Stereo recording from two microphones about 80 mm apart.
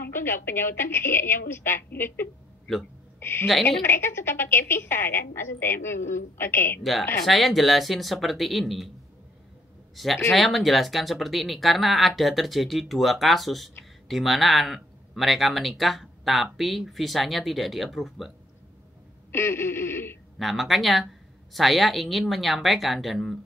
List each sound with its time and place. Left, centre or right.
0.0 s a woman's voice: left
6.8 s speech: centre
9.9 s speech: centre
19.3 s a woman's voice: left
20.3 s speech: centre